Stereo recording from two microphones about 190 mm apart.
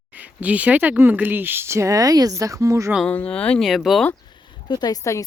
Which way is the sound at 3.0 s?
5° left (ahead or behind).